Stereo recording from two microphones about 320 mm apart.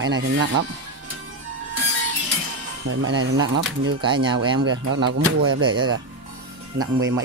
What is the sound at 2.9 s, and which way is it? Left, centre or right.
Speech, right.